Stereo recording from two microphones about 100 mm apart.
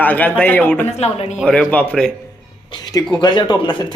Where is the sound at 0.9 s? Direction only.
90° left.